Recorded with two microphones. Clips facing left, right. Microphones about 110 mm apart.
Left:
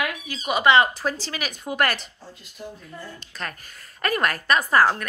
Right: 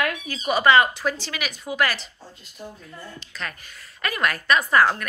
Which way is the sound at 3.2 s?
45° left (ahead or behind).